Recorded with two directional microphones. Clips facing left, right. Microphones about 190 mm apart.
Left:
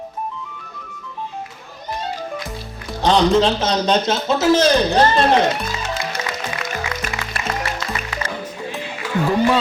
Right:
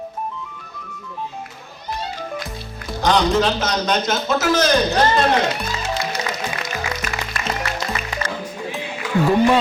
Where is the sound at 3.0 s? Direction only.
30° left (ahead or behind).